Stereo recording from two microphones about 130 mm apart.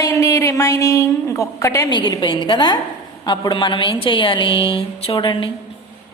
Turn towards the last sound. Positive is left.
turn(degrees=40)  # may be behind; listen again after turning